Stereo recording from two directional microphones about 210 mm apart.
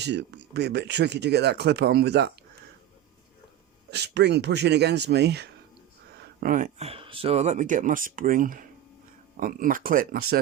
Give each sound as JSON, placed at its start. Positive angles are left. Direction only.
{"t": 0.0, "sound": "speech", "side_deg": -55}
{"t": 3.9, "sound": "speech", "side_deg": -55}
{"t": 6.4, "sound": "speech", "side_deg": -40}